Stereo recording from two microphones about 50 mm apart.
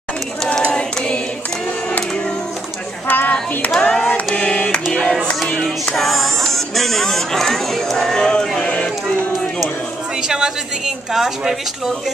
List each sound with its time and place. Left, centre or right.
0.7 s choir: centre
1.9 s music: left
3.1 s child singing: left
3.8 s a sound: centre
4.9 s music: centre
5.9 s speech: centre
8.5 s a sound: centre
10.2 s a sound: centre
11.1 s speech: centre